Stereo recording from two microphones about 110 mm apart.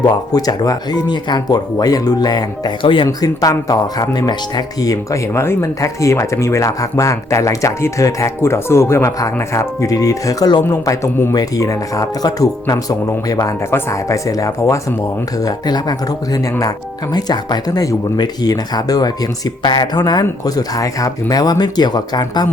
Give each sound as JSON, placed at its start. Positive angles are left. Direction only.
{"t": 0.3, "sound": "speech", "side_deg": 35}
{"t": 2.8, "sound": "speech", "side_deg": 50}
{"t": 3.1, "sound": "speech", "side_deg": 35}